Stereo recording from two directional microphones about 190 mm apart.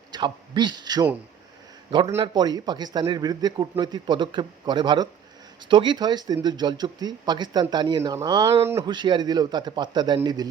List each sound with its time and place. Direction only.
0.1 s speech: 25° right (ahead or behind)